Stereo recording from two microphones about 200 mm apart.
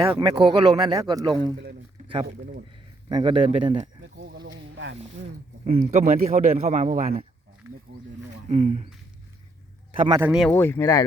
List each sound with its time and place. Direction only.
0.2 s speech: 20° right (ahead or behind)
2.2 s speech: 55° right (ahead or behind)
3.1 s speech: 25° right (ahead or behind)
4.2 s a sound: 60° right (ahead or behind)
5.6 s a man's voice: 35° right (ahead or behind)
8.4 s a man's voice: 35° right (ahead or behind)
10.1 s speech: 10° right (ahead or behind)
10.5 s speech: 10° left (ahead or behind)